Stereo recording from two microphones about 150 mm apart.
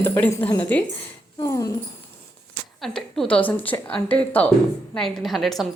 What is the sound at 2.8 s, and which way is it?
A woman's voice, centre (ahead or behind).